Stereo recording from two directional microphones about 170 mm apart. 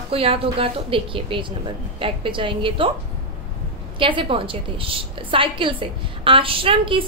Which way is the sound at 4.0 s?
30° right (ahead or behind).